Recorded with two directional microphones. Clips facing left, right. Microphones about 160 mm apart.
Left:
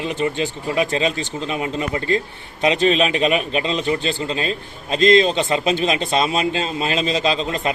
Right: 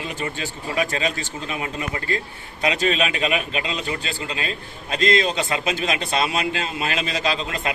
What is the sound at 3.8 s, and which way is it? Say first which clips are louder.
A man's voice: left 7 dB; 25° left (ahead or behind).